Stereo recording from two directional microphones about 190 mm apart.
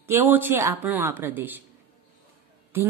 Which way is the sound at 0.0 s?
10° right (ahead or behind).